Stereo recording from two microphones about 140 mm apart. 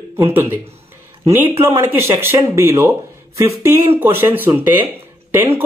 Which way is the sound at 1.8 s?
15° right (ahead or behind).